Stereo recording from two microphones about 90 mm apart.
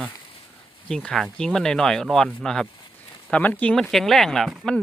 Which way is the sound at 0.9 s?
5° left (ahead or behind).